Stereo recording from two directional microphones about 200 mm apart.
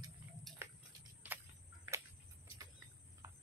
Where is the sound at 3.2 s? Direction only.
15° right (ahead or behind).